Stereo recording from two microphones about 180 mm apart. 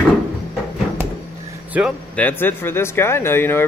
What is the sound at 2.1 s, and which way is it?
Speech, 10° left (ahead or behind).